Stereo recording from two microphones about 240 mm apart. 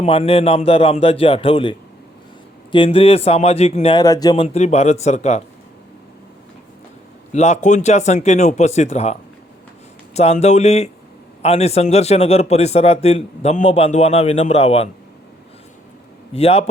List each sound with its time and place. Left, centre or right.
0.0 s a man's voice: left
2.7 s a man's voice: left
4.4 s a man's voice: left
7.3 s a man's voice: left
10.2 s a man's voice: left
16.3 s a man's voice: left